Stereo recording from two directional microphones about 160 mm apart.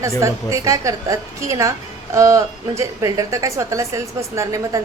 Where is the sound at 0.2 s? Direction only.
20° right (ahead or behind).